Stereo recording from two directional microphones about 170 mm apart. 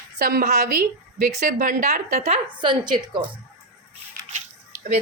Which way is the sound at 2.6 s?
25° right (ahead or behind).